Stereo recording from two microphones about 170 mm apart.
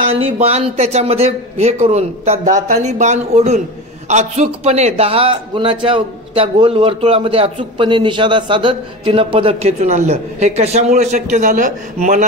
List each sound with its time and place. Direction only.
0.2 s a man's voice: 35° right (ahead or behind)